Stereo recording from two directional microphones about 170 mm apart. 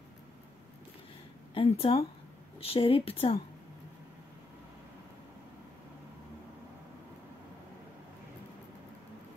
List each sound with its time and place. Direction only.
1.5 s speech: 35° left (ahead or behind)